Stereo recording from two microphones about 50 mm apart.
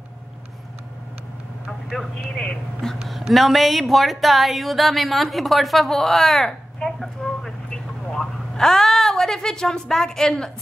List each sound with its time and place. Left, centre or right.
1.7 s vehicle: centre
2.1 s speech: centre
3.0 s speech: centre